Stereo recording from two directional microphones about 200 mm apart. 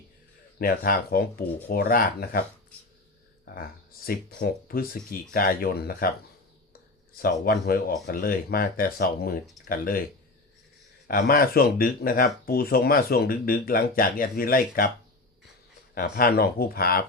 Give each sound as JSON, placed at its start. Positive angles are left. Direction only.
{"t": 0.6, "sound": "speech", "side_deg": 45}
{"t": 4.0, "sound": "speech", "side_deg": 45}
{"t": 7.2, "sound": "speech", "side_deg": 50}
{"t": 11.1, "sound": "speech", "side_deg": 45}
{"t": 16.0, "sound": "speech", "side_deg": 45}